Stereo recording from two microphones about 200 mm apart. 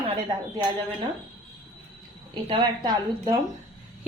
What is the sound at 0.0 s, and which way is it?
Speech, 20° right (ahead or behind).